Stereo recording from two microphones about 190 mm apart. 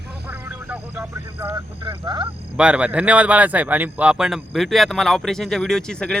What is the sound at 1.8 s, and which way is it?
Speech, 25° right (ahead or behind).